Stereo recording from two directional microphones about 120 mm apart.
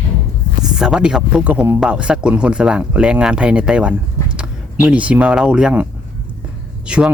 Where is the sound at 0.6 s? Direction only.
5° right (ahead or behind).